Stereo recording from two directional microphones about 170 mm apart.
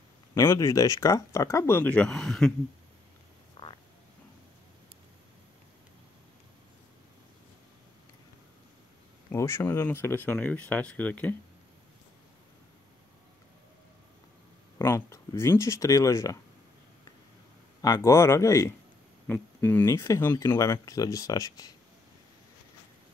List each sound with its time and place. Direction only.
0.3 s speech: 15° left (ahead or behind)
3.6 s frog: 30° left (ahead or behind)
9.3 s speech: 15° left (ahead or behind)
14.8 s speech: 15° left (ahead or behind)
17.8 s speech: 20° left (ahead or behind)